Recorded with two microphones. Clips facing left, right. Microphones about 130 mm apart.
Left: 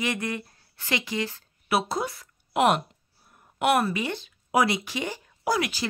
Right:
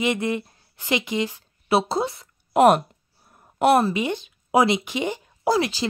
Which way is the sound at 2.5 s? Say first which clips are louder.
Right 6 dB; 40° right (ahead or behind).